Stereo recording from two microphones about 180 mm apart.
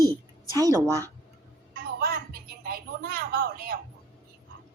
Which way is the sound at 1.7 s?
60° right (ahead or behind).